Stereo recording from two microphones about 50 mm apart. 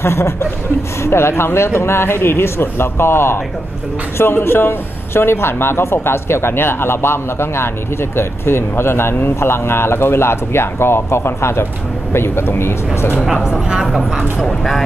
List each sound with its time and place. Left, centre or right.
0.0 s a man's voice: left
13.3 s speech: centre
13.8 s speech: centre